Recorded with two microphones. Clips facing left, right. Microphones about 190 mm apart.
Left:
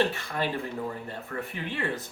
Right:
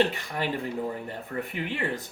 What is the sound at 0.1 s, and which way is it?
Speech, 15° right (ahead or behind).